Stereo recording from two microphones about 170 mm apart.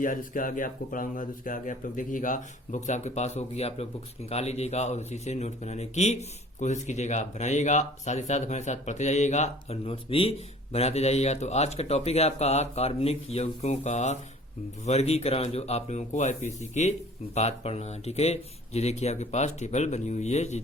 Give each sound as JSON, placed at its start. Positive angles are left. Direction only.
{"t": 0.0, "sound": "speech", "side_deg": 55}